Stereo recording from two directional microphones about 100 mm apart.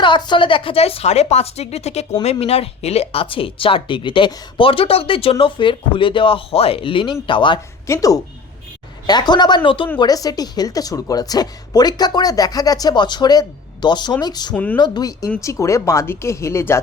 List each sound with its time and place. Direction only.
0.0 s a woman's voice: 50° left (ahead or behind)
7.9 s a woman's voice: 35° left (ahead or behind)
9.6 s speech: 60° left (ahead or behind)
10.0 s a woman's voice: 40° left (ahead or behind)
14.5 s speech: 15° left (ahead or behind)
14.8 s speech: 45° left (ahead or behind); by 16.8 s 25° left (ahead or behind)